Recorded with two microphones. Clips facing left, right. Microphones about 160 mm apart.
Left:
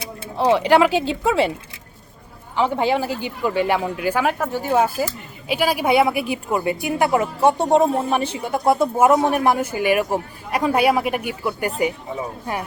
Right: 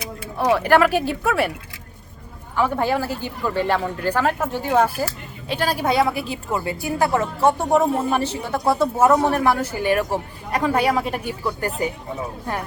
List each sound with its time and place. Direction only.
0.0 s speech: 25° left (ahead or behind)
2.6 s speech: 20° left (ahead or behind)